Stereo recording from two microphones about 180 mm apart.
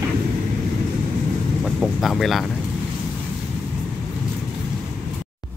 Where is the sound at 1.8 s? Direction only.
Centre (ahead or behind).